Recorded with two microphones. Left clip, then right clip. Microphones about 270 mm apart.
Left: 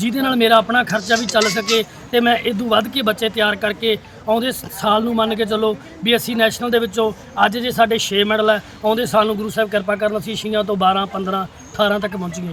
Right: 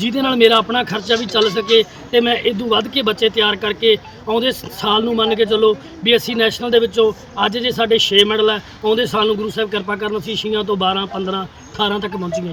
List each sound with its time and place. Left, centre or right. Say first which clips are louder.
0.0 s speech: right 4 dB; centre